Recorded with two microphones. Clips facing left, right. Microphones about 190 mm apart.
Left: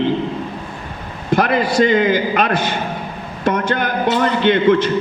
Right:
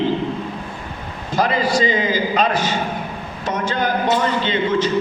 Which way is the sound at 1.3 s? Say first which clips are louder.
Left 3 dB; 60° left (ahead or behind).